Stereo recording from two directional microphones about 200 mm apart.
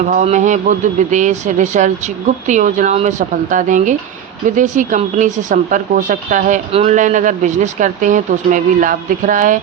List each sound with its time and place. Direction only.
0.0 s speech: 40° right (ahead or behind)